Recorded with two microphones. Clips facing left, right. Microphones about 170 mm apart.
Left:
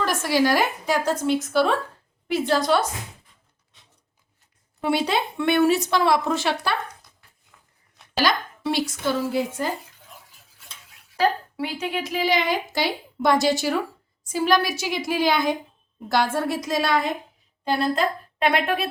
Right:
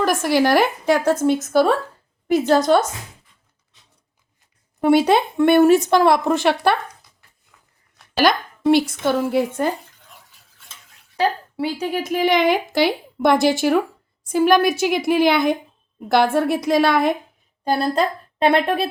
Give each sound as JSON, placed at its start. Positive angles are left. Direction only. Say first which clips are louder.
{"t": 0.0, "sound": "speech", "louder": "right 4 dB", "side_deg": -55}
{"t": 1.2, "sound": "a woman's voice", "louder": "right 4 dB", "side_deg": -45}
{"t": 4.8, "sound": "a woman's voice", "louder": "right 8 dB", "side_deg": -50}
{"t": 8.2, "sound": "speech", "louder": "right 6 dB", "side_deg": -55}
{"t": 11.5, "sound": "speech", "louder": "right 5 dB", "side_deg": -35}
{"t": 18.3, "sound": "speech", "louder": "right 6 dB", "side_deg": -30}